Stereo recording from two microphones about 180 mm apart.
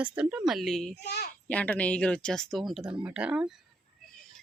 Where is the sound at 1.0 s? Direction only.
70° left (ahead or behind).